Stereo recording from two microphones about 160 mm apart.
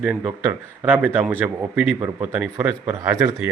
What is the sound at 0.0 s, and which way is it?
Speech, 10° right (ahead or behind).